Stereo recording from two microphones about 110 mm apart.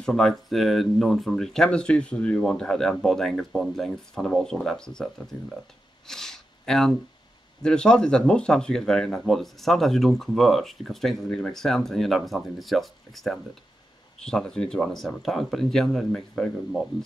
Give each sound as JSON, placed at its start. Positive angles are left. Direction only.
{"t": 0.0, "sound": "speech", "side_deg": 0}
{"t": 6.0, "sound": "a sound", "side_deg": 5}
{"t": 7.6, "sound": "speech", "side_deg": 5}